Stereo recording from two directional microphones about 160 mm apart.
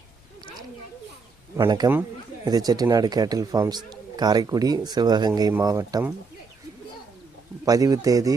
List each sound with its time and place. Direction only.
1.5 s speech: 25° right (ahead or behind)
7.6 s speech: 20° right (ahead or behind)